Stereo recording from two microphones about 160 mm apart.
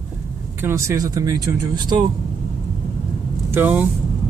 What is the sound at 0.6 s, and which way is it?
Speech, 20° right (ahead or behind).